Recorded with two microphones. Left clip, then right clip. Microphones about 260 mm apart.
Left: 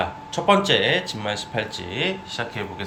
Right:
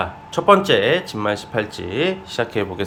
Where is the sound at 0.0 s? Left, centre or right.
Centre.